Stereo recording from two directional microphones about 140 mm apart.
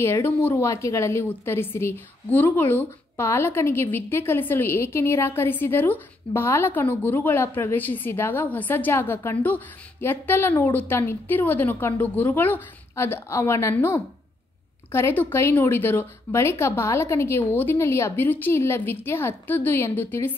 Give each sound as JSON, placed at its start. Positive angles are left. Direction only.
{"t": 0.0, "sound": "a woman's voice", "side_deg": 15}